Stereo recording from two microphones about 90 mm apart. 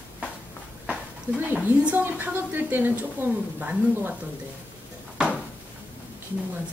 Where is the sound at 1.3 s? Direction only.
15° right (ahead or behind).